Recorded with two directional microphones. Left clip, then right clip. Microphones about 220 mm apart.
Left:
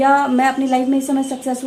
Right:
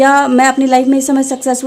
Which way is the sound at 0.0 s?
50° right (ahead or behind).